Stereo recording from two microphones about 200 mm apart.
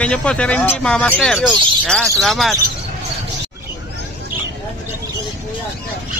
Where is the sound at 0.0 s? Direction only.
5° left (ahead or behind).